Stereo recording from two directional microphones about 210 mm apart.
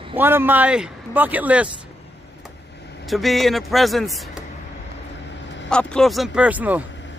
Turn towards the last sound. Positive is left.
turn(degrees=-5)  # may be behind; listen again after turning